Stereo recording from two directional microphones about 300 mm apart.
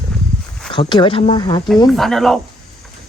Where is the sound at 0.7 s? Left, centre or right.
Centre.